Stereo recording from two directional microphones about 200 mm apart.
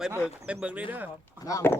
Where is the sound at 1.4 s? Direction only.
15° left (ahead or behind).